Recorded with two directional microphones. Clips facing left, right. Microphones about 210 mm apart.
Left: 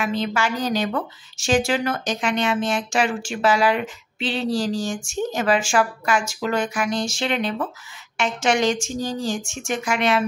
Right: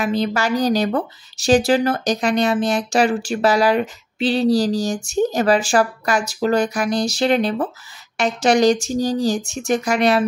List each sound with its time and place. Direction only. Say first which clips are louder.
0.0 s a woman's voice: right 3 dB; 40° right (ahead or behind)